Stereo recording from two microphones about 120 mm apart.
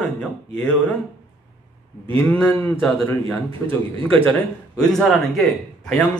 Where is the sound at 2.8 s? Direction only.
5° left (ahead or behind).